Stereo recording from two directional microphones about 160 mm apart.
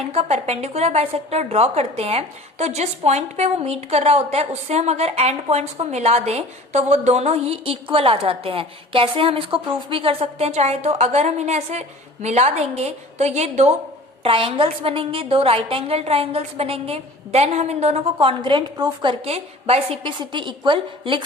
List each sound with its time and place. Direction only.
0.1 s a woman's voice: 40° right (ahead or behind)
14.3 s a woman's voice: 35° right (ahead or behind)